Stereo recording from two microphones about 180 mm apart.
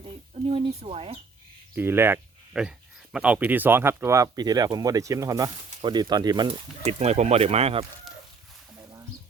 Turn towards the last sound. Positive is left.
turn(degrees=-35)  # may be behind; listen again after turning